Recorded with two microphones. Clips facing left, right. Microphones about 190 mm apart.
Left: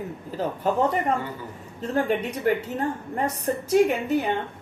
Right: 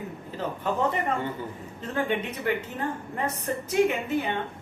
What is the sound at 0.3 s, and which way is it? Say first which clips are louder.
Speech: left 4 dB; 40° left (ahead or behind).